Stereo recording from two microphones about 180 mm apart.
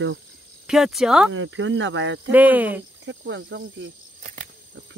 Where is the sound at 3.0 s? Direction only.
80° right.